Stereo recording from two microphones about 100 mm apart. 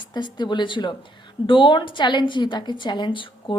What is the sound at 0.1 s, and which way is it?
A woman's voice, 50° left (ahead or behind).